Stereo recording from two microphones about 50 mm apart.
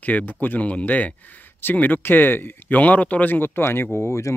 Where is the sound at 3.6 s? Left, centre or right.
Left.